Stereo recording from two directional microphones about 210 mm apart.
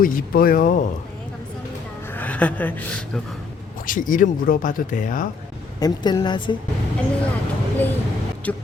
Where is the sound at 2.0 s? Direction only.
10° left (ahead or behind).